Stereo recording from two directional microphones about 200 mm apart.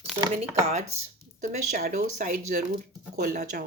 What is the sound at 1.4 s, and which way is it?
Speech, 40° right (ahead or behind).